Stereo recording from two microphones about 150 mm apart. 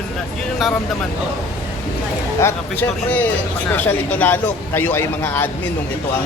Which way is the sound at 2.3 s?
15° left (ahead or behind).